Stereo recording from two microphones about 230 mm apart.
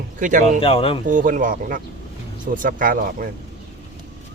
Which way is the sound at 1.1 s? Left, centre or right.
Right.